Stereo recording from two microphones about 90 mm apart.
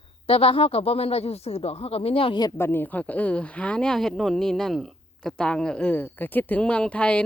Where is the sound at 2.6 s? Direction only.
25° left (ahead or behind).